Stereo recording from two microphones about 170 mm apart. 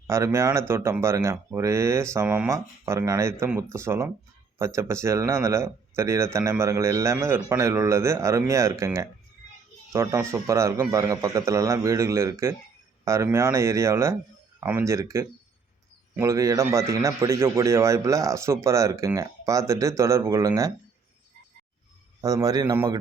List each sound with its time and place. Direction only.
0.1 s a man's voice: 15° right (ahead or behind)
22.2 s a man's voice: 20° right (ahead or behind)